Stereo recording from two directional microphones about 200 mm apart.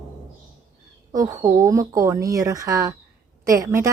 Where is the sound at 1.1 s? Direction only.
15° right (ahead or behind).